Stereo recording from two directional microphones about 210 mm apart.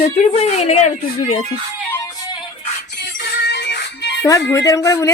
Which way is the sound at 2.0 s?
15° left (ahead or behind).